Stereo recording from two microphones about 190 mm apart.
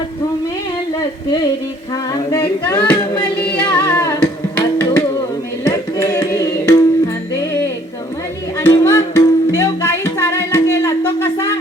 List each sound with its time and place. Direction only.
2.3 s singing: 15° left (ahead or behind)
3.6 s music: 10° left (ahead or behind)
8.6 s music: 15° left (ahead or behind)